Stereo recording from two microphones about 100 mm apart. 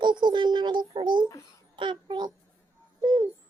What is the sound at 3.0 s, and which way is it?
Bird, 45° right (ahead or behind).